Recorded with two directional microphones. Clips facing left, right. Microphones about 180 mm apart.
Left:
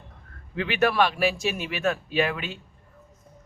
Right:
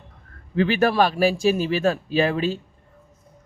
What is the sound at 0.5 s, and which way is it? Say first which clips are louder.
Speech: right 4 dB; 35° right (ahead or behind).